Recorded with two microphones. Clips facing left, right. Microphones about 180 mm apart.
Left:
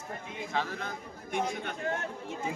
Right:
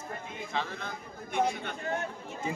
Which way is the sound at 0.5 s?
45° left (ahead or behind).